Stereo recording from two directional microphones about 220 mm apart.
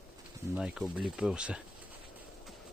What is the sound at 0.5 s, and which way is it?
Speech, 5° right (ahead or behind).